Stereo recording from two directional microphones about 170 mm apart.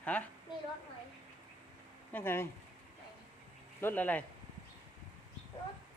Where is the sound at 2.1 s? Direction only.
10° left (ahead or behind).